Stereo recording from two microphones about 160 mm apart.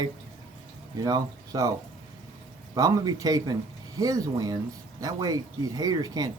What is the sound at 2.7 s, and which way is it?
Speech, 20° right (ahead or behind).